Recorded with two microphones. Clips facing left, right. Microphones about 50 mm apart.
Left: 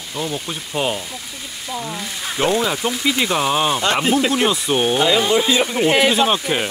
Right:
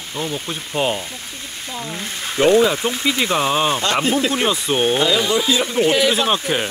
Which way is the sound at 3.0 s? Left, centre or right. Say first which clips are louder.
Even; centre.